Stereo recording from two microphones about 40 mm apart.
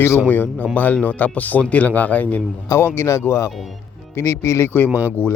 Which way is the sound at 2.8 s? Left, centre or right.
Left.